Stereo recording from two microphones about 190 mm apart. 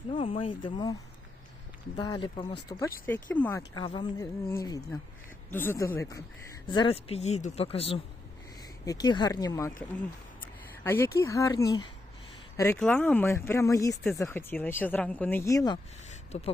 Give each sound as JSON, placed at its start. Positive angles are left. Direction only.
{"t": 0.1, "sound": "speech", "side_deg": 30}
{"t": 2.0, "sound": "speech", "side_deg": 25}
{"t": 3.1, "sound": "speech", "side_deg": 10}
{"t": 3.8, "sound": "speech", "side_deg": 25}
{"t": 8.8, "sound": "speech", "side_deg": 20}
{"t": 10.8, "sound": "speech", "side_deg": 10}
{"t": 16.0, "sound": "a sound", "side_deg": 35}